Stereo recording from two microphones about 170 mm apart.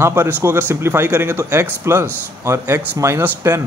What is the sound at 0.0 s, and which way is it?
A man's voice, 15° right (ahead or behind).